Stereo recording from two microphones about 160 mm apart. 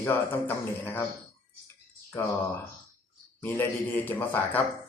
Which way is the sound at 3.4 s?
15° left (ahead or behind).